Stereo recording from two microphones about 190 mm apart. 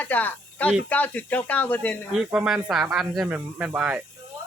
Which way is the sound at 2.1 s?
5° right (ahead or behind).